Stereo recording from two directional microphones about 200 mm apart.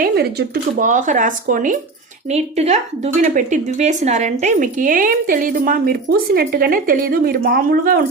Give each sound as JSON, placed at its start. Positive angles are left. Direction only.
{"t": 0.0, "sound": "a woman's voice", "side_deg": -50}